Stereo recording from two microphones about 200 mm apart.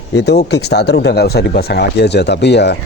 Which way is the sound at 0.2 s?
55° left (ahead or behind).